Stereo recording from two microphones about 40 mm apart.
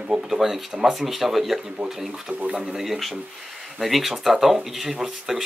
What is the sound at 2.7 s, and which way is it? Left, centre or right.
Speech, centre.